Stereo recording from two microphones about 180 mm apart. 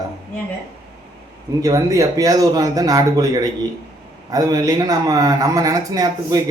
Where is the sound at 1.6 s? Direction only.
20° right (ahead or behind).